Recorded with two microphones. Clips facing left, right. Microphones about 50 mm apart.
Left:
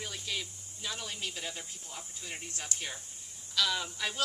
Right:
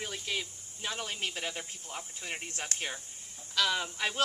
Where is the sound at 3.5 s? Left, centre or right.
Right.